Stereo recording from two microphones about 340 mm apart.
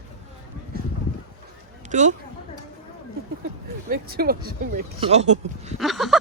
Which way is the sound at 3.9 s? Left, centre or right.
Right.